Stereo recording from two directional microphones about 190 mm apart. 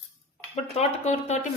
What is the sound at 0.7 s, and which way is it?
Speech, 35° left (ahead or behind).